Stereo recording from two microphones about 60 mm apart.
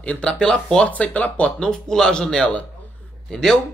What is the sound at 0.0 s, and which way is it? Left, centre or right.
Speech, centre.